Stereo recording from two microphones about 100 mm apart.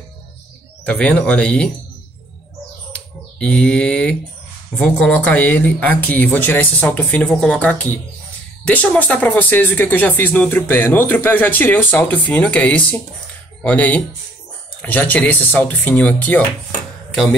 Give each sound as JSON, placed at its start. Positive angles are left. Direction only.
{"t": 0.8, "sound": "speech", "side_deg": 10}
{"t": 2.9, "sound": "bird", "side_deg": 10}
{"t": 4.7, "sound": "speech", "side_deg": 10}
{"t": 17.1, "sound": "speech", "side_deg": 0}